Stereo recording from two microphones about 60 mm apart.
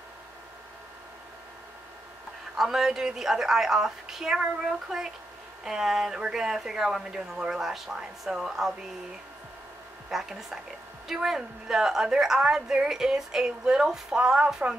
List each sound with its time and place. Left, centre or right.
2.5 s a woman's voice: centre
10.0 s a woman's voice: centre